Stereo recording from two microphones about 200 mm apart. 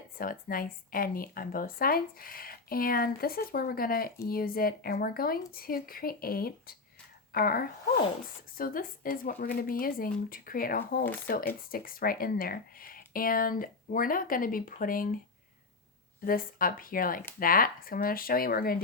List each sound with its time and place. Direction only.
0.2 s a woman's voice: 45° left (ahead or behind)
16.2 s a woman's voice: 45° left (ahead or behind)